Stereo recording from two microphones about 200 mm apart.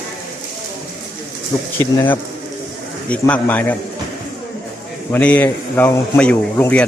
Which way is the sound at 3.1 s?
5° left (ahead or behind).